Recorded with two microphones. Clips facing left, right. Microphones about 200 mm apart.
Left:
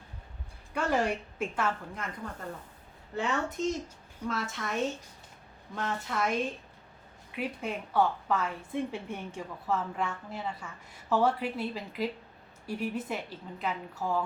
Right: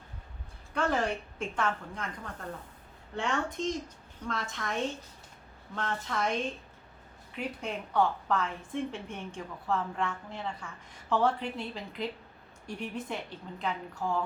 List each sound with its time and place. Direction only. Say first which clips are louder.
0.7 s a woman's voice: left 1 dB; 10° left (ahead or behind)
5.7 s a woman's voice: left 1 dB; 10° left (ahead or behind)
7.3 s a woman's voice: left 1 dB; 5° left (ahead or behind)